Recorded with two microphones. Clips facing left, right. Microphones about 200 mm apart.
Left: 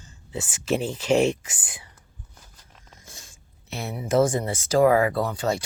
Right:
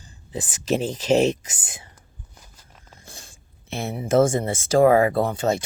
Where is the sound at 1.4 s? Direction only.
40° right (ahead or behind).